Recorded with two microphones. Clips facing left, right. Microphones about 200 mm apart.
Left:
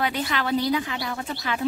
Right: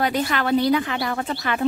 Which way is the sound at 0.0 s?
45° right (ahead or behind).